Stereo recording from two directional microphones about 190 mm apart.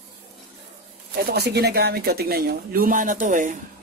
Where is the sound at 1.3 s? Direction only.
60° right (ahead or behind).